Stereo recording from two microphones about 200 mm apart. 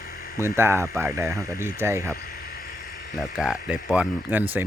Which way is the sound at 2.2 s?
50° left (ahead or behind).